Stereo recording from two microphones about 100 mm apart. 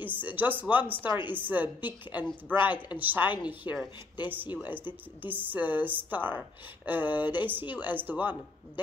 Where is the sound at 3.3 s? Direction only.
45° left (ahead or behind).